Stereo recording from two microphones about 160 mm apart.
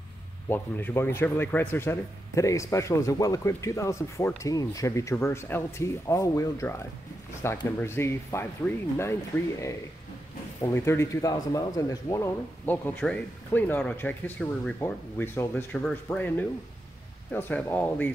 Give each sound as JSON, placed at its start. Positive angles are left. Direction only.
{"t": 0.5, "sound": "speech", "side_deg": 10}
{"t": 12.6, "sound": "speech", "side_deg": 10}